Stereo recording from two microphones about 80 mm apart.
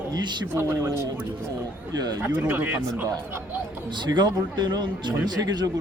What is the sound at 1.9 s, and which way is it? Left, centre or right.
Speech, right.